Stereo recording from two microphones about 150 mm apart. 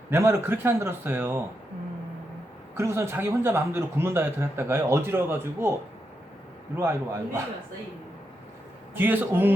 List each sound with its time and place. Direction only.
0.1 s a man's voice: 20° right (ahead or behind)
2.7 s a man's voice: 15° right (ahead or behind)
6.7 s a man's voice: 15° right (ahead or behind)
9.0 s a man's voice: 10° right (ahead or behind)